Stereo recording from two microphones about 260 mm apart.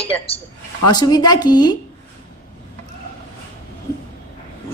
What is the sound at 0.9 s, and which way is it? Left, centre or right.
Speech, centre.